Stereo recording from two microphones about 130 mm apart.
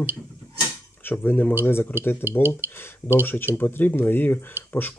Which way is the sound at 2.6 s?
15° left (ahead or behind).